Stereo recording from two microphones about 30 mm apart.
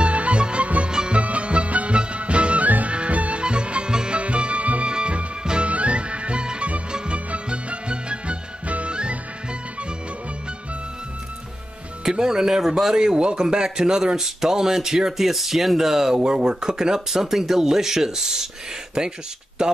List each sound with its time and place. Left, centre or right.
0.0 s music: right
1.2 s music: right
2.6 s music: right
2.9 s music: right
3.4 s music: right
4.2 s music: right
4.8 s music: right
5.7 s music: right
7.4 s music: right
8.6 s music: right
9.5 s music: right
12.0 s music: right
12.9 s speech: right
16.3 s speech: right